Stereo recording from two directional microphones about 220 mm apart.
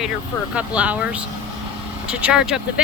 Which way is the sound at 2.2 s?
5° right (ahead or behind).